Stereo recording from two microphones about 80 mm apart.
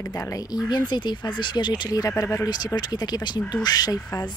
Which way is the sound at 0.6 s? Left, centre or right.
Left.